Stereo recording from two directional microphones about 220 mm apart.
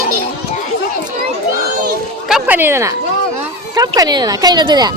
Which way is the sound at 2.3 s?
5° right (ahead or behind).